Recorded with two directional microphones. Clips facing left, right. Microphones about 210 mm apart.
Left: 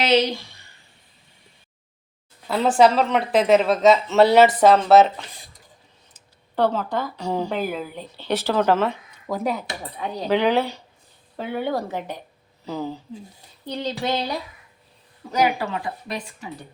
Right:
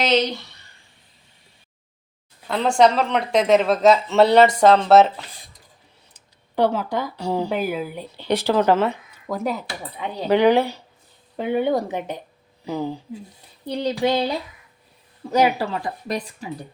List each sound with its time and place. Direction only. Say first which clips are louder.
0.1 s speech: left 1 dB; 10° left (ahead or behind)
2.5 s speech: even; 5° left (ahead or behind)
6.1 s speech: right 2 dB; 10° right (ahead or behind)
9.2 s speech: even; centre (ahead or behind)
10.2 s speech: right 4 dB; 10° right (ahead or behind)
15.3 s a woman's voice: right 3 dB; 30° right (ahead or behind)